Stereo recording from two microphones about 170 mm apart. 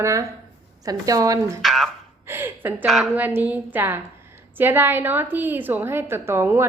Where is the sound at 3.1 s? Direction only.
10° right (ahead or behind).